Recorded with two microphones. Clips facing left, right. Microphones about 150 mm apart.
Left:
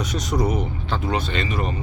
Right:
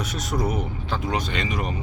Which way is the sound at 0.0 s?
5° right (ahead or behind).